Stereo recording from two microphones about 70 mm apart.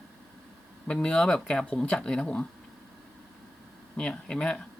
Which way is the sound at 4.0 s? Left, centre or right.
Centre.